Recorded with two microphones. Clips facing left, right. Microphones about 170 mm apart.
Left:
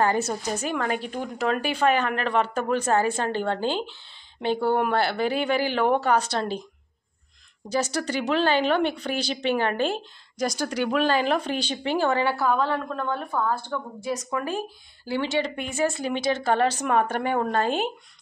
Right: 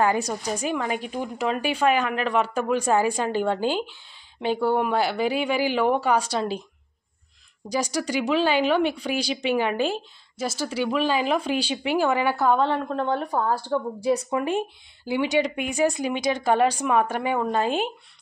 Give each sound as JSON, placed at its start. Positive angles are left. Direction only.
{"t": 0.0, "sound": "a woman's voice", "side_deg": -5}
{"t": 7.6, "sound": "a woman's voice", "side_deg": -10}